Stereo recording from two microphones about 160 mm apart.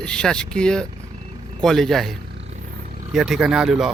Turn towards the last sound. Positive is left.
turn(degrees=0)  # may be behind; listen again after turning